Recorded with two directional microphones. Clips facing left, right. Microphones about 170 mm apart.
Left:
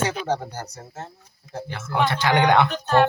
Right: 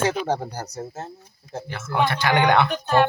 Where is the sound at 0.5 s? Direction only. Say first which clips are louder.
Right 3 dB; 40° right (ahead or behind).